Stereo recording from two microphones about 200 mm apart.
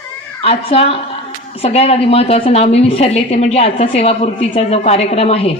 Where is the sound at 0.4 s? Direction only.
30° left (ahead or behind).